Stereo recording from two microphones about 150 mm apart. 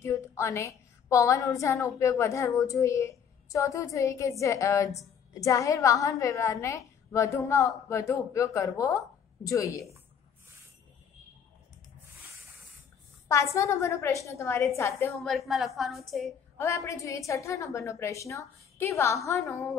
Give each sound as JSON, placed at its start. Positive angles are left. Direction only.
{"t": 0.0, "sound": "a woman's voice", "side_deg": 20}
{"t": 13.3, "sound": "a woman's voice", "side_deg": 20}
{"t": 15.1, "sound": "a woman's voice", "side_deg": 0}
{"t": 16.5, "sound": "a woman's voice", "side_deg": 20}